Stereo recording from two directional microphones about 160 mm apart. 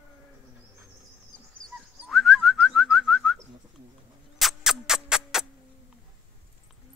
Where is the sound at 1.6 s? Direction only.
Centre (ahead or behind).